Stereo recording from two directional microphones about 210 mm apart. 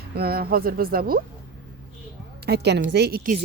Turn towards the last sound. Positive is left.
turn(degrees=-50)  # may be behind; listen again after turning